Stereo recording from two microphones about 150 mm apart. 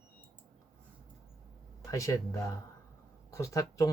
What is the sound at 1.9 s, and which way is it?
Speech, 20° left (ahead or behind).